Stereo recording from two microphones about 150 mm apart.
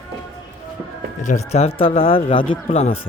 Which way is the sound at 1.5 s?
40° left (ahead or behind).